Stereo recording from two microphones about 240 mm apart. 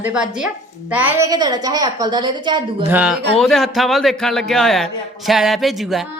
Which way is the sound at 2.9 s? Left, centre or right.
Centre.